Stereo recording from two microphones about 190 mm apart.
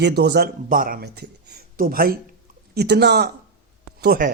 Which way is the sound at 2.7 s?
60° right (ahead or behind).